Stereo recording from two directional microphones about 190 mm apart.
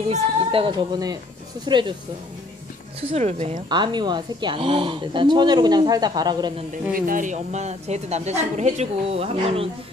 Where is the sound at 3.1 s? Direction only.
35° right (ahead or behind).